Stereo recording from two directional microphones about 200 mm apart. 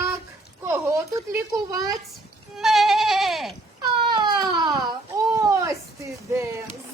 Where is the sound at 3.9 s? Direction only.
20° right (ahead or behind).